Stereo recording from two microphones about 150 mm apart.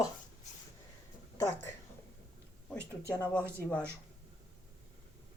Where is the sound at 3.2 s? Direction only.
10° left (ahead or behind).